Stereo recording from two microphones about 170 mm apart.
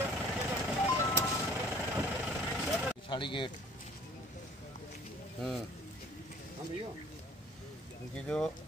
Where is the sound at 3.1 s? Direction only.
30° left (ahead or behind).